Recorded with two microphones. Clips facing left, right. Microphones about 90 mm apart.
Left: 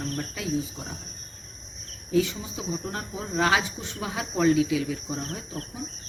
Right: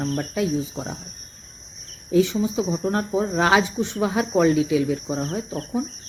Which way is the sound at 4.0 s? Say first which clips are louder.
Right 7 dB; 35° right (ahead or behind).